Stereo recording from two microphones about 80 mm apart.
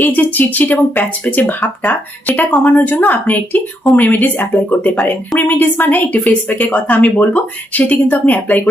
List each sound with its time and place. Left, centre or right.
0.0 s a woman's voice: left